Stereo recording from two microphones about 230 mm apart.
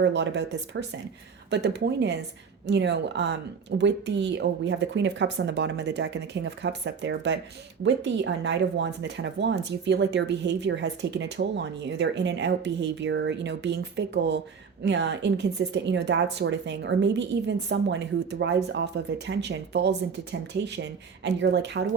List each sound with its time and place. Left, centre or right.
0.0 s speech: right